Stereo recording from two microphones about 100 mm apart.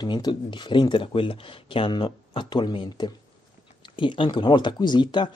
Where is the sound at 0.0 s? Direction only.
45° left (ahead or behind).